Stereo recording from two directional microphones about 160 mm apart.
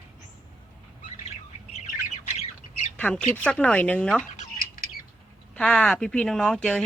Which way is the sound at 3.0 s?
5° left (ahead or behind).